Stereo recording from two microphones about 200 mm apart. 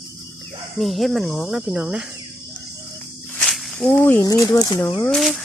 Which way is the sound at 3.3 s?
Centre (ahead or behind).